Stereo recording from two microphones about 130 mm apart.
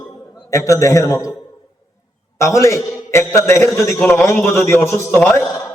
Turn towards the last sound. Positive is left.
turn(degrees=20)  # may be behind; listen again after turning